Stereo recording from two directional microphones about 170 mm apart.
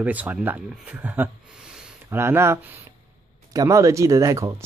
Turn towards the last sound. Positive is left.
turn(degrees=-20)  # may be behind; listen again after turning